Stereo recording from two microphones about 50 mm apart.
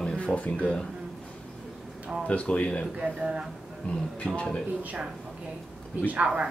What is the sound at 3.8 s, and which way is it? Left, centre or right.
Speech, left.